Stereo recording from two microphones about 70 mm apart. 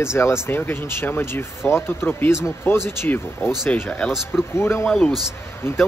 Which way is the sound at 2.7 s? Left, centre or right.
Left.